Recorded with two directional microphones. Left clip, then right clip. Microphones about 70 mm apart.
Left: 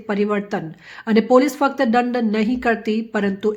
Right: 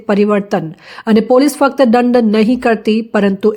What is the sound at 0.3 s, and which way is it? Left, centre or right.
Speech, right.